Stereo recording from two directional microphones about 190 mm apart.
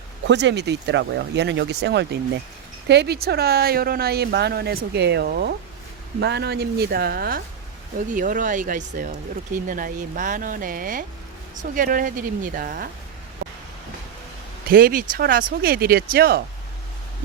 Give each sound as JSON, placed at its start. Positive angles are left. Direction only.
{"t": 0.3, "sound": "speech", "side_deg": -65}
{"t": 14.7, "sound": "speech", "side_deg": -50}